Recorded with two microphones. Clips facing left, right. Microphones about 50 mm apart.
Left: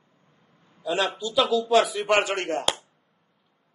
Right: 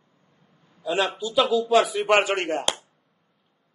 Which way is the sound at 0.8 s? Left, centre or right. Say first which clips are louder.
Right 1 dB; right.